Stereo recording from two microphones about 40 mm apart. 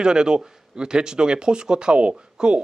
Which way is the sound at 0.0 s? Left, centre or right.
Centre.